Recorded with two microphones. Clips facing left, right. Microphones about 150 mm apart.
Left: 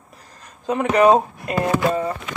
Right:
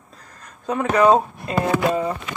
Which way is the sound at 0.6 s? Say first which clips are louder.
Left 1 dB; 20° left (ahead or behind).